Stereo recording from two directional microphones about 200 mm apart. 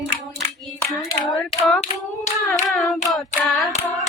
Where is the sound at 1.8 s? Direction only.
35° left (ahead or behind).